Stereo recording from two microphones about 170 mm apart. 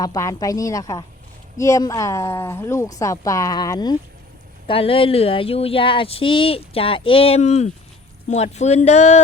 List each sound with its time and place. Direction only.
0.0 s speech: 20° left (ahead or behind); by 9.2 s 40° left (ahead or behind)